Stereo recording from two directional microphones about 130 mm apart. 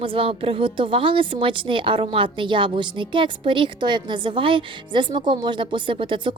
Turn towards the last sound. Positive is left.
turn(degrees=-40)  # may be behind; listen again after turning